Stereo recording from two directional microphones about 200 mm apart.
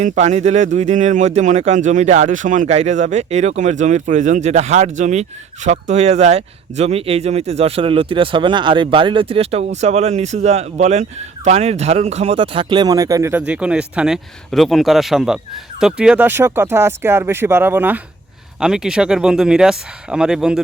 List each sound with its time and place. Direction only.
0.0 s speech: 35° right (ahead or behind); by 20.6 s 5° right (ahead or behind)